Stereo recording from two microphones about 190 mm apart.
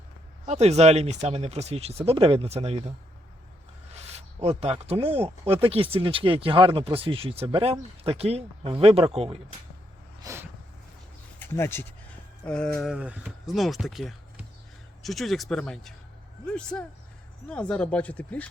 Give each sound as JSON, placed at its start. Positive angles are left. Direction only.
{"t": 0.4, "sound": "speech", "side_deg": -35}
{"t": 3.9, "sound": "speech", "side_deg": -35}
{"t": 10.2, "sound": "a sound", "side_deg": -15}
{"t": 11.3, "sound": "speech", "side_deg": 10}